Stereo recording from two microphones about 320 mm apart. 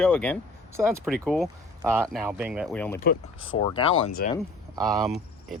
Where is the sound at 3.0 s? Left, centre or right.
Left.